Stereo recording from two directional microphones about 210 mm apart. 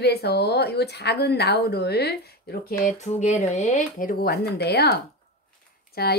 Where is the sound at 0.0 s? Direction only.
50° left (ahead or behind).